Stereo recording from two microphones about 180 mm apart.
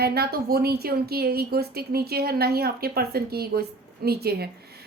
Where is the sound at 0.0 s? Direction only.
60° right (ahead or behind).